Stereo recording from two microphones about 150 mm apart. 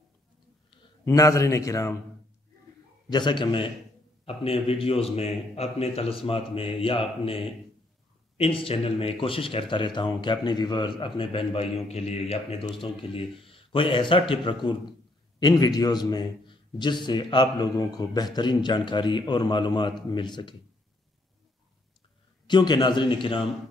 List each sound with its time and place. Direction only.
1.0 s a man's voice: 20° left (ahead or behind)
3.1 s a man's voice: 30° left (ahead or behind)
22.5 s a man's voice: 30° left (ahead or behind)